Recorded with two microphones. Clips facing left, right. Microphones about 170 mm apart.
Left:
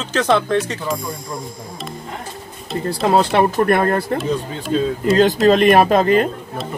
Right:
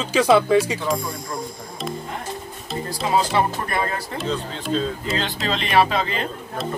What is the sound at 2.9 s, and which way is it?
Speech, 60° left (ahead or behind).